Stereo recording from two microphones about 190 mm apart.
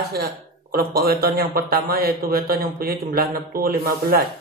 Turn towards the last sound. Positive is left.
turn(degrees=-50)  # may be behind; listen again after turning